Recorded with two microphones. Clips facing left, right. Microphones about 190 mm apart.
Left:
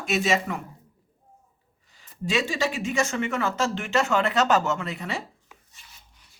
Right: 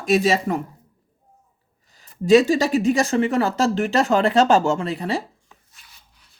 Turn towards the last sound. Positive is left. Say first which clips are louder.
# even
turn(degrees=0)  # may be behind; listen again after turning